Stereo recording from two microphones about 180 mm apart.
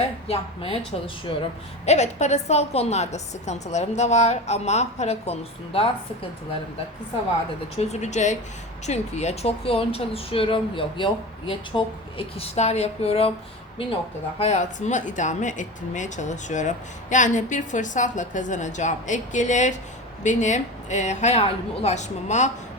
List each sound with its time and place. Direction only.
0.3 s a woman's voice: 30° left (ahead or behind)
7.8 s speech: 40° left (ahead or behind)
14.3 s a woman's voice: 35° left (ahead or behind)